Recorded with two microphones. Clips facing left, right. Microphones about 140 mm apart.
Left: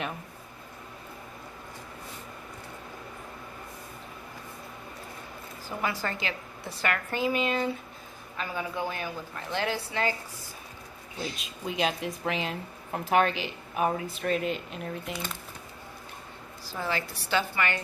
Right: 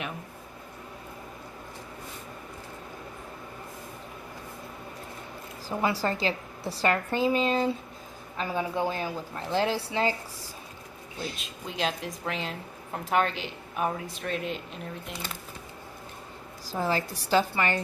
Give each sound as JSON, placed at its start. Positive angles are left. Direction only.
{"t": 5.6, "sound": "a woman's voice", "side_deg": -30}
{"t": 11.2, "sound": "a woman's voice", "side_deg": 0}
{"t": 16.7, "sound": "a woman's voice", "side_deg": -35}